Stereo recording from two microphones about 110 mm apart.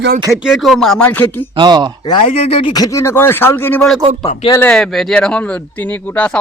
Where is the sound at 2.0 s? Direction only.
50° left (ahead or behind).